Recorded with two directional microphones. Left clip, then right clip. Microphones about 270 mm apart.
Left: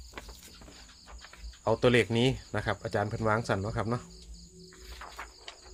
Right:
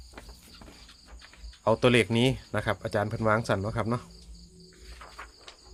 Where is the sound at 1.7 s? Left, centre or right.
Centre.